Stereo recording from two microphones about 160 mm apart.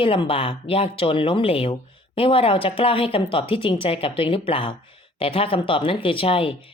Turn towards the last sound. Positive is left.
turn(degrees=35)  # may be behind; listen again after turning